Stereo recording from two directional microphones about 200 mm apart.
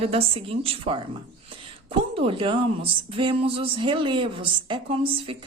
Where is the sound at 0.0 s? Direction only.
30° right (ahead or behind).